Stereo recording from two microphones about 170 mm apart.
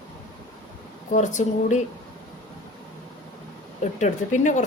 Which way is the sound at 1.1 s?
45° left (ahead or behind).